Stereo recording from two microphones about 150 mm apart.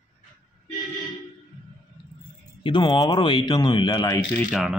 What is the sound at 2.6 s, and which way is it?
Speech, 30° left (ahead or behind).